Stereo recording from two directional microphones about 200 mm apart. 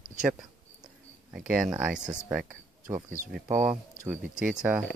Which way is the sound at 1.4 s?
45° right (ahead or behind).